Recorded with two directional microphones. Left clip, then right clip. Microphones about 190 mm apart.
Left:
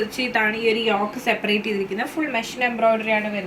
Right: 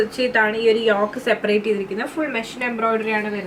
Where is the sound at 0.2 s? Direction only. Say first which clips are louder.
Right 2 dB; 5° left (ahead or behind).